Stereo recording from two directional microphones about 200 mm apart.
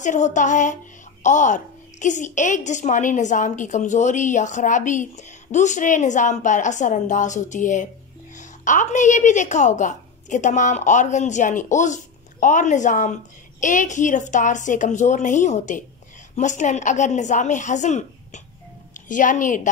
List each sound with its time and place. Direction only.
0.0 s a woman's voice: 40° left (ahead or behind)